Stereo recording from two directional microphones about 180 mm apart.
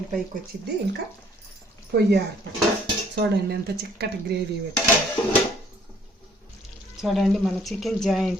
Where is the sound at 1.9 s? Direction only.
60° right (ahead or behind).